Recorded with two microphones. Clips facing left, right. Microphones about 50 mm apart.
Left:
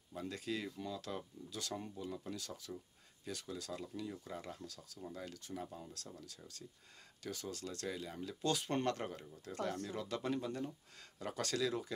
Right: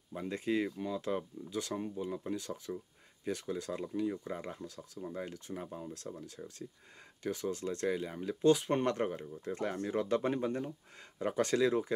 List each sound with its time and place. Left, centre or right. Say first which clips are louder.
0.1 s speech: right 8 dB; right